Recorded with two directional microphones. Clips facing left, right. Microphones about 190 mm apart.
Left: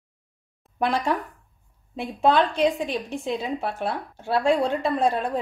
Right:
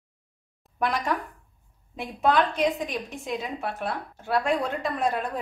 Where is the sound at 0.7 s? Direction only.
30° left (ahead or behind).